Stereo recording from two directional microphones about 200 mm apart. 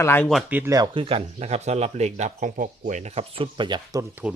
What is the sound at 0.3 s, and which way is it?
Speech, 5° right (ahead or behind).